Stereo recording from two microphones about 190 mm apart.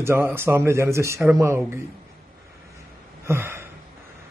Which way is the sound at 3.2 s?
15° right (ahead or behind).